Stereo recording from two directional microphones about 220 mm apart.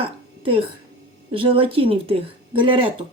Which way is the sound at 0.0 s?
25° right (ahead or behind).